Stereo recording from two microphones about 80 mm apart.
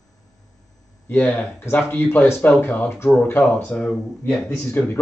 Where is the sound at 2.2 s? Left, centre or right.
Left.